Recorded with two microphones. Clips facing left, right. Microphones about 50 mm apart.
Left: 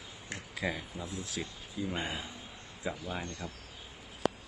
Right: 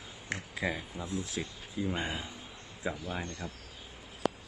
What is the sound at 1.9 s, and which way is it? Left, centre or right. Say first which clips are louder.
Speech: right 1 dB; centre.